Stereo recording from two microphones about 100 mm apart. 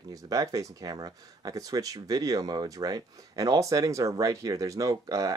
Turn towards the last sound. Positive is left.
turn(degrees=-35)  # may be behind; listen again after turning